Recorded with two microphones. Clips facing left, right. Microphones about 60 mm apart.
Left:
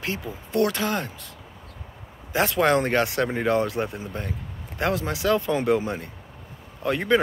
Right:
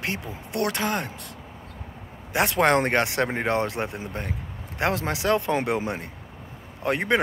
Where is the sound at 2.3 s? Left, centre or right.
Right.